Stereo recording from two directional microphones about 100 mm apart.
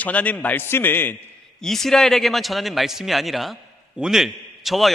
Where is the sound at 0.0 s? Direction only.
15° left (ahead or behind).